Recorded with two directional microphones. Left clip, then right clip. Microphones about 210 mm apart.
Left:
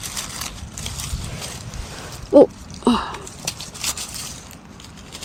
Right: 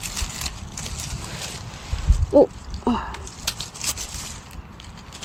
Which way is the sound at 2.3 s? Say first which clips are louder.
Left 4 dB; 15° left (ahead or behind).